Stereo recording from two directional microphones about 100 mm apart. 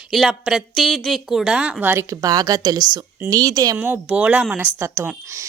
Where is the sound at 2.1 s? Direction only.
40° right (ahead or behind).